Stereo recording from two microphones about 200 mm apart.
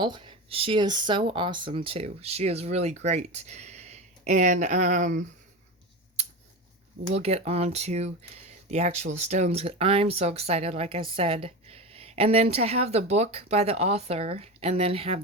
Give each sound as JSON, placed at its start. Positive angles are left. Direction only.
{"t": 0.0, "sound": "speech", "side_deg": -25}
{"t": 7.2, "sound": "speech", "side_deg": -30}